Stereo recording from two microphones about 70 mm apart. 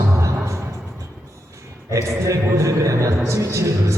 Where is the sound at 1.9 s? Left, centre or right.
Right.